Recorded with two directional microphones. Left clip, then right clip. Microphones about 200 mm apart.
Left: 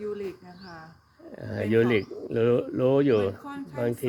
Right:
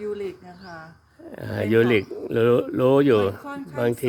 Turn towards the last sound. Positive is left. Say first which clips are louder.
# right 5 dB
turn(degrees=-10)  # may be behind; listen again after turning